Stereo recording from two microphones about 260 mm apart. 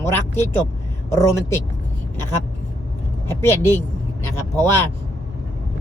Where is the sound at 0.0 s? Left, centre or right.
Centre.